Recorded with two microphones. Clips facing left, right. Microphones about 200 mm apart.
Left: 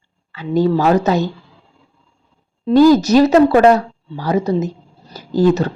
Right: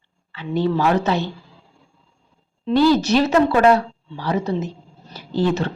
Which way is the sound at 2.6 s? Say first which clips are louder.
Left 6 dB; 45° left (ahead or behind).